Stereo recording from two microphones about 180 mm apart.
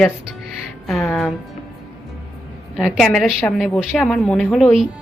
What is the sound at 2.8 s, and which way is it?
A woman's voice, centre (ahead or behind).